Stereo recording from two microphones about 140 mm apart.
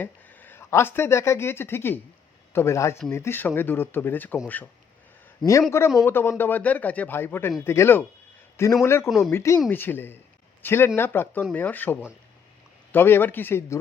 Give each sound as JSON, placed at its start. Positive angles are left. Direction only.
{"t": 0.0, "sound": "speech", "side_deg": 15}
{"t": 5.7, "sound": "speech", "side_deg": 20}
{"t": 9.0, "sound": "speech", "side_deg": 0}
{"t": 9.3, "sound": "speech", "side_deg": 20}